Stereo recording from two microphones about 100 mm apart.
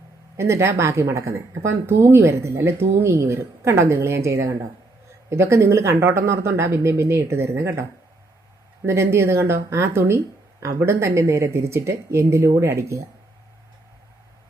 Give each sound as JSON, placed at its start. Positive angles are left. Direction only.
{"t": 0.3, "sound": "speech", "side_deg": -25}
{"t": 8.9, "sound": "speech", "side_deg": -25}